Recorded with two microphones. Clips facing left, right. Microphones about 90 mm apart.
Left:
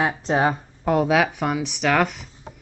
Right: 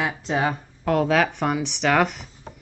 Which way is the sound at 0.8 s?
15° left (ahead or behind).